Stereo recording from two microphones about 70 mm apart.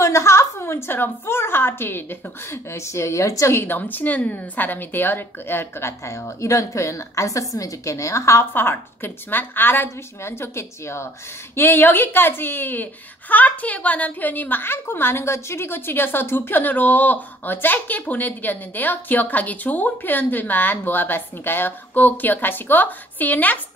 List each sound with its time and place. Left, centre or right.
0.0 s a woman's voice: left
3.5 s a woman's voice: left
8.5 s a woman's voice: left